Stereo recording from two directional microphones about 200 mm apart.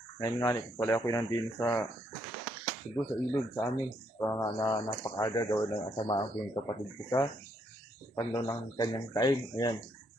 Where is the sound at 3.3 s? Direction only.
15° left (ahead or behind).